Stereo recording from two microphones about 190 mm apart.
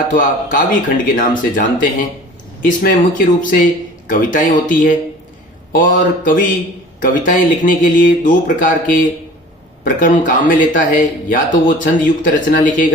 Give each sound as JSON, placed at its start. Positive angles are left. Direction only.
{"t": 0.1, "sound": "speech", "side_deg": 45}
{"t": 6.0, "sound": "speech", "side_deg": 45}